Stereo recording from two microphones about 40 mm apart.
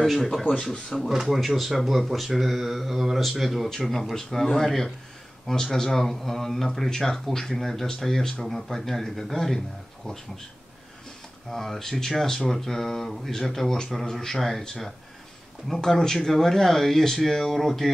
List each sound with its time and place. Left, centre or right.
0.0 s speech: centre
0.5 s speech: centre
1.0 s speech: centre
11.5 s speech: centre
15.7 s speech: centre